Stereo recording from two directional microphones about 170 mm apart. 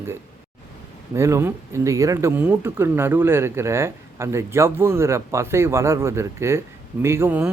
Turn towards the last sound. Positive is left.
turn(degrees=-10)  # may be behind; listen again after turning